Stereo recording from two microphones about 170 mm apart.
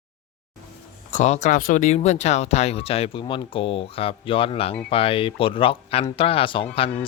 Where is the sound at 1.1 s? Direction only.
45° left (ahead or behind).